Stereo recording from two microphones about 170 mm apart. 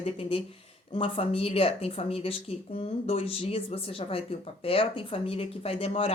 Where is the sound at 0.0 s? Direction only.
35° left (ahead or behind).